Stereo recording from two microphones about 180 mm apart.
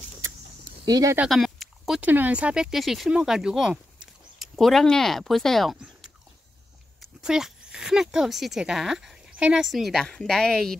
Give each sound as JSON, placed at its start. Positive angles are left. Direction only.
{"t": 0.8, "sound": "speech", "side_deg": -20}
{"t": 1.1, "sound": "speech", "side_deg": 0}